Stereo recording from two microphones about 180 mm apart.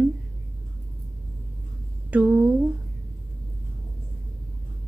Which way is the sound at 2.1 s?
5° right (ahead or behind).